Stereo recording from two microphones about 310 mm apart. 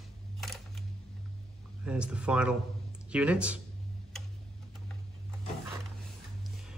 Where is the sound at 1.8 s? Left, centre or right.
Centre.